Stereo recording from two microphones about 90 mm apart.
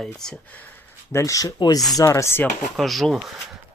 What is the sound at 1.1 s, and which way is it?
Speech, 30° left (ahead or behind).